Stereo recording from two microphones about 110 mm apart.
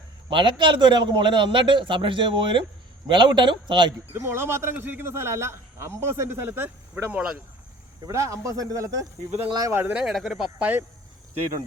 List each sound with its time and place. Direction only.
0.3 s a man's voice: 50° right (ahead or behind)
4.1 s a man's voice: 20° right (ahead or behind)
8.0 s a man's voice: 30° right (ahead or behind)
9.9 s speech: 5° right (ahead or behind)
10.6 s speech: 15° right (ahead or behind)